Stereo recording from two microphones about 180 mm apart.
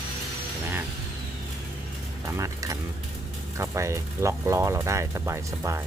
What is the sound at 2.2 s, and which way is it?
Speech, 15° right (ahead or behind).